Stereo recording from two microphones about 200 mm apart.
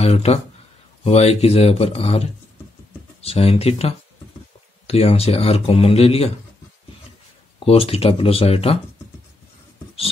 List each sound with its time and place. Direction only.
0.0 s speech: 30° left (ahead or behind)
7.6 s speech: 30° left (ahead or behind)